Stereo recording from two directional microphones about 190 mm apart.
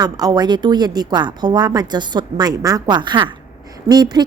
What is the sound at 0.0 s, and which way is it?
A woman's voice, 20° right (ahead or behind).